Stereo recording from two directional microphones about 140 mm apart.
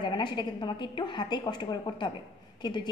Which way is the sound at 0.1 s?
35° left (ahead or behind).